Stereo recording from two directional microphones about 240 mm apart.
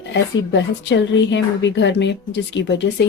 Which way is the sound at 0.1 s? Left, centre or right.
Left.